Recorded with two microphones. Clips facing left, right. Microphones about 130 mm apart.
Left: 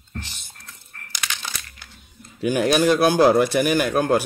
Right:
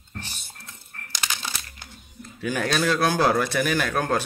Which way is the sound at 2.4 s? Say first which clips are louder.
Left 6 dB; 15° left (ahead or behind).